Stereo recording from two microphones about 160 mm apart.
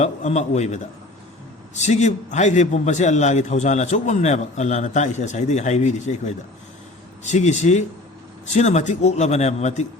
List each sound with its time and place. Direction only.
0.0 s a man's voice: 45° left (ahead or behind)